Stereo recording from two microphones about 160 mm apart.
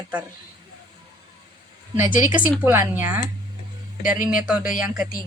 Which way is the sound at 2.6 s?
10° right (ahead or behind).